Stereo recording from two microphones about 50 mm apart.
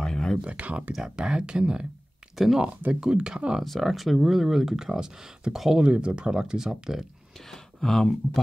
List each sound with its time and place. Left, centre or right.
0.0 s a sound: centre
0.4 s speech: right
1.0 s speech: centre
2.3 s speech: centre
2.8 s speech: right
3.6 s speech: centre
5.8 s speech: right
7.5 s speech: centre